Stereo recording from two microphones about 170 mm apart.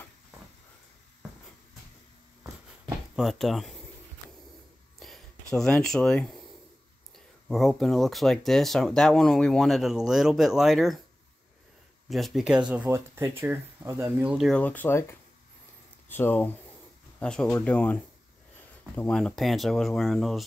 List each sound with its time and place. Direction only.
3.2 s speech: centre (ahead or behind)
4.9 s a sound: centre (ahead or behind)
7.4 s speech: centre (ahead or behind)
12.1 s speech: centre (ahead or behind)
14.5 s speech: 10° left (ahead or behind)
18.9 s speech: 5° left (ahead or behind)